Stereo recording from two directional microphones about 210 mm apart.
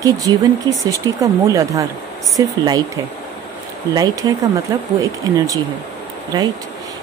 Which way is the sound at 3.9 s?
15° right (ahead or behind).